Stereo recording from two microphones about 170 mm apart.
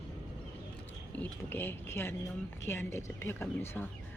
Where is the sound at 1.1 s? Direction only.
10° left (ahead or behind).